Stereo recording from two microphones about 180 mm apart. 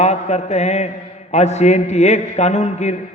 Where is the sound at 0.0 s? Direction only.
40° left (ahead or behind).